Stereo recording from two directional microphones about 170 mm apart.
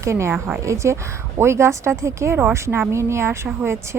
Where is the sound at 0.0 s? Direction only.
15° right (ahead or behind).